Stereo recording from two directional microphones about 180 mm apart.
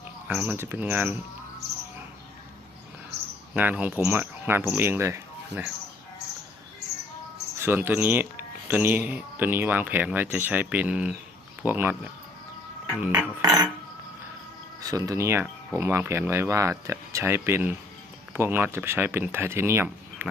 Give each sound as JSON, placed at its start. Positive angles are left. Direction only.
{"t": 0.3, "sound": "speech", "side_deg": -10}
{"t": 3.5, "sound": "speech", "side_deg": -10}
{"t": 7.6, "sound": "speech", "side_deg": -10}
{"t": 13.0, "sound": "speech", "side_deg": -5}
{"t": 13.4, "sound": "cutlery", "side_deg": -20}
{"t": 14.8, "sound": "speech", "side_deg": -20}